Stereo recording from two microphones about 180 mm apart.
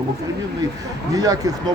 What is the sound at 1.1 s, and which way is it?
Speech, 20° right (ahead or behind).